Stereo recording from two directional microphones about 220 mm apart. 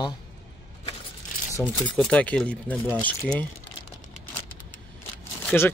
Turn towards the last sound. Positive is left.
turn(degrees=5)  # may be behind; listen again after turning